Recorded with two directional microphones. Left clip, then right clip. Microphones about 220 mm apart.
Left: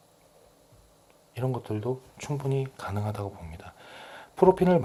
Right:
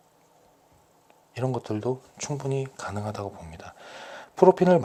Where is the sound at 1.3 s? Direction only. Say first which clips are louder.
Right 3 dB; 20° right (ahead or behind).